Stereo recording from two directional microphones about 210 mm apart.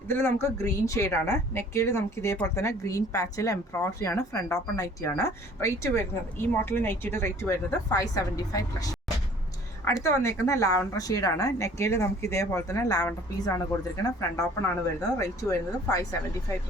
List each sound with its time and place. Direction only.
0.1 s a woman's voice: 10° left (ahead or behind)